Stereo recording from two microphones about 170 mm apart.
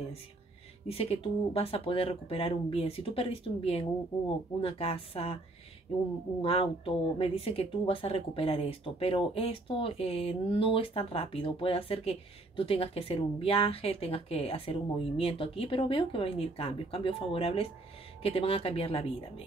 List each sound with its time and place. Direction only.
0.8 s speech: 35° left (ahead or behind)
6.4 s speech: 35° left (ahead or behind)